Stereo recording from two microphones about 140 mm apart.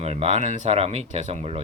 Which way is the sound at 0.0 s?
50° right (ahead or behind).